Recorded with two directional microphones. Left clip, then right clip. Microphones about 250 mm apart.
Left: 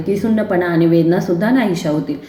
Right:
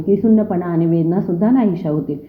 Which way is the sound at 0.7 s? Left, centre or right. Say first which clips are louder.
Left 5 dB; centre.